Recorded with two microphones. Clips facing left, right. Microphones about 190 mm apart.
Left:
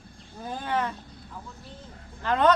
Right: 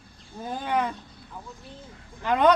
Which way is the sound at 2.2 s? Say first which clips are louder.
Right 2 dB; 10° right (ahead or behind).